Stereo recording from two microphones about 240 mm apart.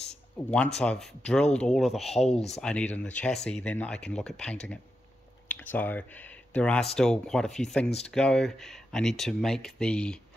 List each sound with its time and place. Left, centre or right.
0.4 s speech: centre
2.2 s speech: left
2.6 s speech: centre